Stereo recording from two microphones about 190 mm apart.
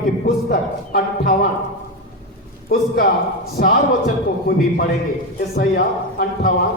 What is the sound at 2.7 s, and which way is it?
Speech, 50° left (ahead or behind).